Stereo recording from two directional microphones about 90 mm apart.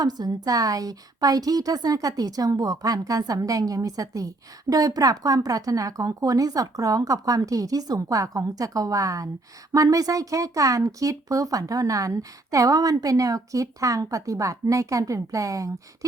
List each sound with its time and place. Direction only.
0.0 s a woman's voice: 45° right (ahead or behind)